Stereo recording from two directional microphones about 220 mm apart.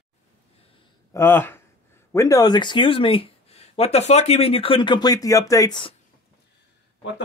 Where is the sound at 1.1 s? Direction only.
10° left (ahead or behind).